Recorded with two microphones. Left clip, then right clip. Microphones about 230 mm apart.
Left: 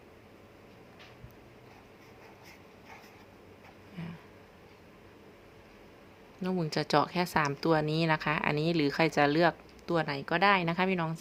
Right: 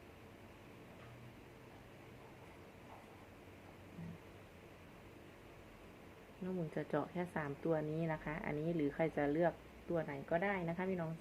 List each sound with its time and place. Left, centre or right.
6.4 s speech: left